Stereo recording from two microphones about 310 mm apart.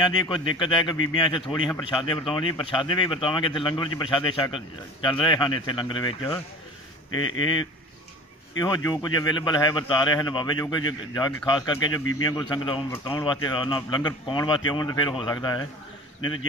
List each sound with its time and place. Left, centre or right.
0.0 s speech: centre
8.5 s speech: centre